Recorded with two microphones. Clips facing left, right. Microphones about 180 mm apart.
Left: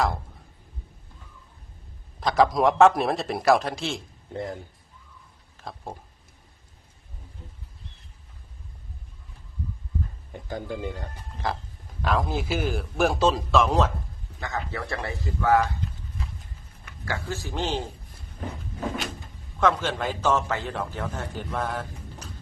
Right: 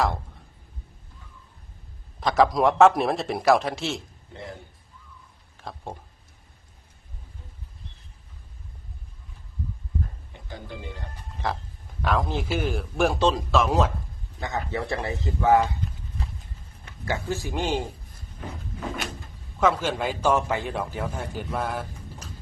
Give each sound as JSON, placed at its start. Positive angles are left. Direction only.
{"t": 2.2, "sound": "a man's voice", "side_deg": 0}
{"t": 5.6, "sound": "speech", "side_deg": 0}
{"t": 10.5, "sound": "speech", "side_deg": 45}
{"t": 12.0, "sound": "a man's voice", "side_deg": 0}
{"t": 14.3, "sound": "speech", "side_deg": -20}
{"t": 17.1, "sound": "a man's voice", "side_deg": -15}
{"t": 19.5, "sound": "a man's voice", "side_deg": -10}